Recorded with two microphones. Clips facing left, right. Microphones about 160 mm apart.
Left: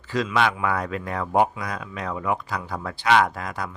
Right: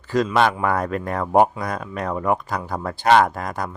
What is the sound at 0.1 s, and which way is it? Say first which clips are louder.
Speech: right 4 dB; 45° right (ahead or behind).